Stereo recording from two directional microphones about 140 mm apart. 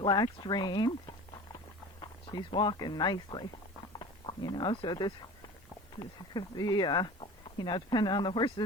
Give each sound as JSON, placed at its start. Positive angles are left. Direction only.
{"t": 0.0, "sound": "speech", "side_deg": 35}